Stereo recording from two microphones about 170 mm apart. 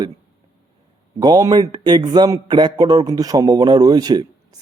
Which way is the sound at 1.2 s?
25° right (ahead or behind).